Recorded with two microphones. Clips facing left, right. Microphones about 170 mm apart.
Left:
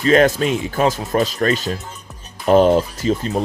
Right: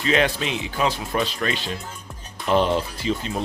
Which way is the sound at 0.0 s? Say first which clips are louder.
Left 8 dB; 45° left (ahead or behind).